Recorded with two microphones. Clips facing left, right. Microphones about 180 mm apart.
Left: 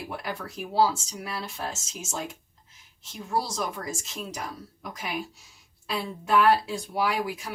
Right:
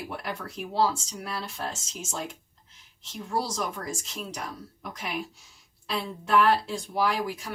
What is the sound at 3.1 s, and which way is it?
Speech, 5° left (ahead or behind).